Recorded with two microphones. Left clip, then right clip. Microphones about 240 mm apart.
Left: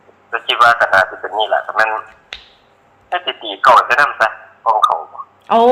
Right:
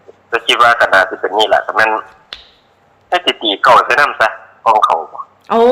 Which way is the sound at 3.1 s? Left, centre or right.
Right.